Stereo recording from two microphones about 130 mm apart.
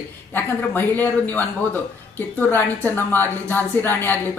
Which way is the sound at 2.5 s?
15° left (ahead or behind).